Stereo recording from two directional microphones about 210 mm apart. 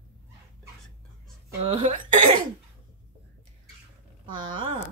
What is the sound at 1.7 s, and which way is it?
Speech, 30° right (ahead or behind).